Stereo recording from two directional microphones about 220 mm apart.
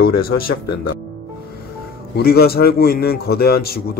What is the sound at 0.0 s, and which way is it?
Speech, 40° left (ahead or behind).